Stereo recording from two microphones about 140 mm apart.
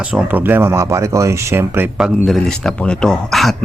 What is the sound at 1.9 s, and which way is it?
Speech, centre (ahead or behind).